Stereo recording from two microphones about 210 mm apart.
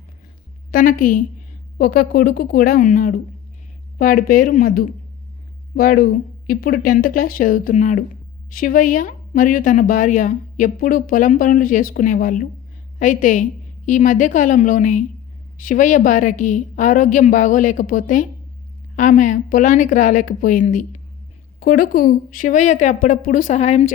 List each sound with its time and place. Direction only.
0.7 s a woman's voice: 40° left (ahead or behind)